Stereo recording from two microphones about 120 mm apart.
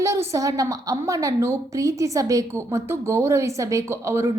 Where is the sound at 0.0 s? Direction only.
25° right (ahead or behind).